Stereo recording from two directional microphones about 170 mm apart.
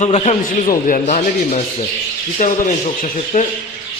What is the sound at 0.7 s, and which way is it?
Speech, 50° left (ahead or behind).